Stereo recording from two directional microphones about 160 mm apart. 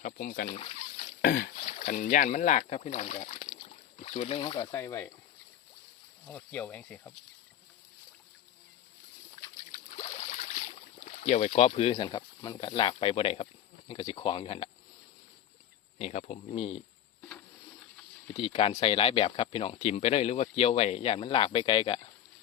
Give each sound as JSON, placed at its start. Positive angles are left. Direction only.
{"t": 0.0, "sound": "speech", "side_deg": 60}
{"t": 0.4, "sound": "a sound", "side_deg": 35}
{"t": 1.2, "sound": "rowboat", "side_deg": 85}
{"t": 1.5, "sound": "speech", "side_deg": 50}
{"t": 3.7, "sound": "boat", "side_deg": 45}
{"t": 4.7, "sound": "speech", "side_deg": 20}
{"t": 6.2, "sound": "speech", "side_deg": 10}
{"t": 9.7, "sound": "boat", "side_deg": 40}
{"t": 11.9, "sound": "speech", "side_deg": 25}
{"t": 16.0, "sound": "speech", "side_deg": 40}
{"t": 17.2, "sound": "a sound", "side_deg": 5}
{"t": 18.3, "sound": "speech", "side_deg": 40}